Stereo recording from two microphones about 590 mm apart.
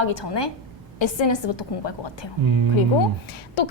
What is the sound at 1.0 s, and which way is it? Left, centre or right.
Speech, left.